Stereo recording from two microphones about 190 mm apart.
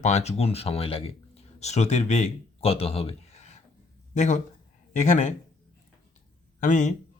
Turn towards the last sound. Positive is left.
turn(degrees=40)  # may be behind; listen again after turning